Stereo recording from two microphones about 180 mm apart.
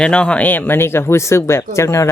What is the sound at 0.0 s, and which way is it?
Speech, 5° left (ahead or behind).